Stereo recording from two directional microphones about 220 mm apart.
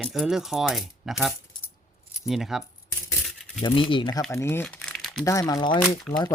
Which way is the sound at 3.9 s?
20° left (ahead or behind).